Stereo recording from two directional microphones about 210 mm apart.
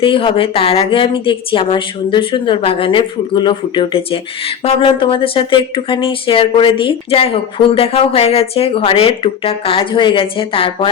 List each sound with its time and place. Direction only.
0.0 s a woman's voice: 25° left (ahead or behind)